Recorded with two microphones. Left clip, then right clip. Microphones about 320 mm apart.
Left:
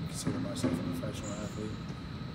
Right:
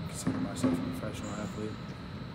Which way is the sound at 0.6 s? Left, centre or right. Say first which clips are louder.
Right 3 dB; right.